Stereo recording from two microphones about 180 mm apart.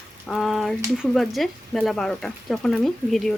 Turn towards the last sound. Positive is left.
turn(degrees=0)  # may be behind; listen again after turning